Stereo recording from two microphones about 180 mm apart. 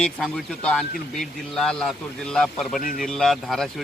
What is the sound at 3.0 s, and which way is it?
Speech, centre (ahead or behind).